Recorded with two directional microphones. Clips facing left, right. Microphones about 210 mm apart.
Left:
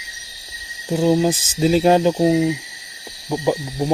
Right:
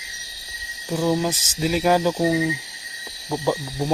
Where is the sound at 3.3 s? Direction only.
15° left (ahead or behind).